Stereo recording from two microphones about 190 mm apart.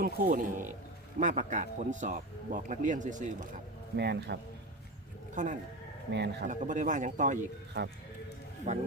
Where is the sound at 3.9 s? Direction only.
60° right (ahead or behind).